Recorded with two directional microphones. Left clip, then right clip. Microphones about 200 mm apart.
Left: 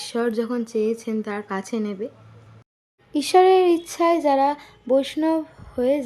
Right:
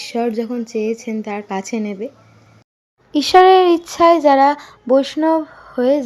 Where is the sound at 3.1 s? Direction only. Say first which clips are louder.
Right 6 dB; 10° right (ahead or behind).